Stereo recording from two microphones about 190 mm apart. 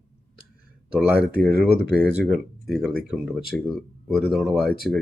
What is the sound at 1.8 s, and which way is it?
Speech, 60° right (ahead or behind).